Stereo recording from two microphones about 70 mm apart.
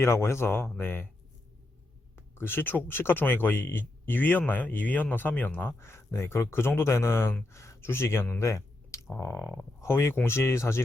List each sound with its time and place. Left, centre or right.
0.0 s speech: left
2.1 s speech: left
8.4 s a sound: left
9.1 s speech: left